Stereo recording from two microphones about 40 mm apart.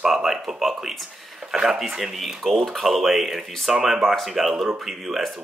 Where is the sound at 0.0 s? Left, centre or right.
Centre.